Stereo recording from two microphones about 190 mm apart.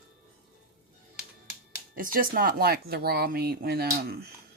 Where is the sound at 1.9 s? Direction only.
45° right (ahead or behind).